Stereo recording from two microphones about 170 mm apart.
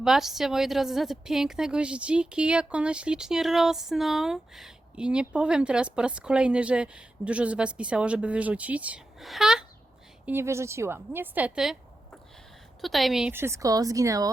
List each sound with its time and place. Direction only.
0.0 s a woman's voice: centre (ahead or behind)
10.2 s a woman's voice: 15° right (ahead or behind)
13.3 s a woman's voice: 15° right (ahead or behind)